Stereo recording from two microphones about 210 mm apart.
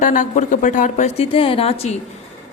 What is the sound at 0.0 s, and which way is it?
A man's voice, 35° left (ahead or behind).